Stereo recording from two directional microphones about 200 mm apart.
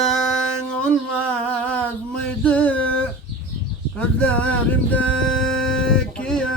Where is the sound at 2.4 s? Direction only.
5° left (ahead or behind).